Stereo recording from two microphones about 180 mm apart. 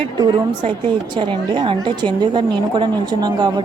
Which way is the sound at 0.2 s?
25° right (ahead or behind).